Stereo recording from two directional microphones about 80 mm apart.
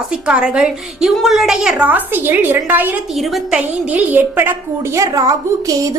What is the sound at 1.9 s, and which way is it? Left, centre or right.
A woman's voice, right.